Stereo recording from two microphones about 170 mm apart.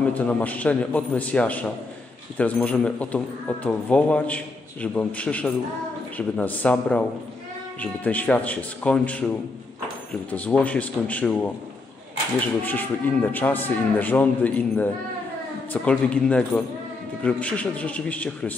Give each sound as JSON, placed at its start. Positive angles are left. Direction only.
{"t": 0.1, "sound": "speech", "side_deg": 10}
{"t": 10.3, "sound": "speech", "side_deg": 10}